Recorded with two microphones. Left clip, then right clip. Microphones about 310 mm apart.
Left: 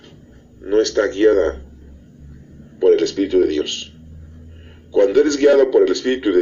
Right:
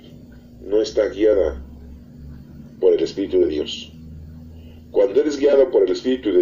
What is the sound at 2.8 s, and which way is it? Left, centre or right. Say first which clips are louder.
Speech: left 2 dB; left.